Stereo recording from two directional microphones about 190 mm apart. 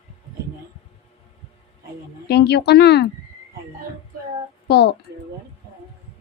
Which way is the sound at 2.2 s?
60° left (ahead or behind).